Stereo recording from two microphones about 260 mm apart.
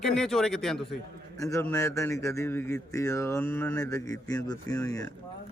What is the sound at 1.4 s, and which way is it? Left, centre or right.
A man's voice, centre.